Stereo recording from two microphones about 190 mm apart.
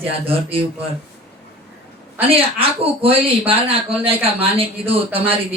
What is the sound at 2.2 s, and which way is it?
Speech, 30° right (ahead or behind).